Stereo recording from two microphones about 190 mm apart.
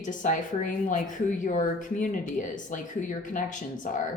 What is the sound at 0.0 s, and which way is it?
Speech, 40° left (ahead or behind).